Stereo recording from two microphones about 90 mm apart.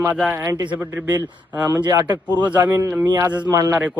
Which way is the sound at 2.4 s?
15° right (ahead or behind).